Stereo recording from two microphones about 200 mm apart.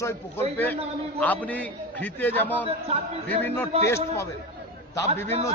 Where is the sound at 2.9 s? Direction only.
30° right (ahead or behind).